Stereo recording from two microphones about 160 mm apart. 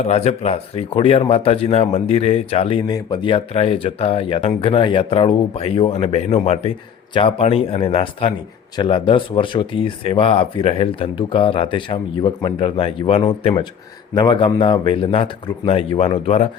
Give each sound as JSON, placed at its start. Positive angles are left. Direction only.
{"t": 0.0, "sound": "speech", "side_deg": 40}